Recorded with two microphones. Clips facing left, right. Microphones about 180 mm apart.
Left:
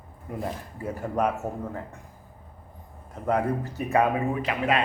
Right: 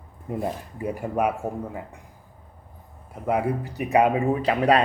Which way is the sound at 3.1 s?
10° right (ahead or behind).